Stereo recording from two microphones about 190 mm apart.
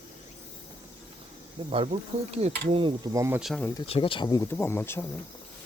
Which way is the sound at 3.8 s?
30° left (ahead or behind).